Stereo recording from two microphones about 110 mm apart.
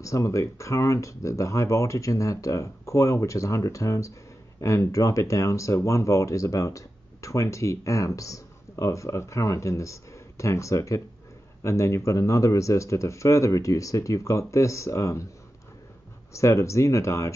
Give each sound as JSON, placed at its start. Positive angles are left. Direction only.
{"t": 0.0, "sound": "speech", "side_deg": 30}
{"t": 16.3, "sound": "speech", "side_deg": 30}